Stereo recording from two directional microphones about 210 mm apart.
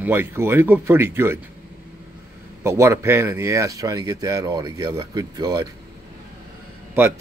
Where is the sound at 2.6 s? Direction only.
15° right (ahead or behind).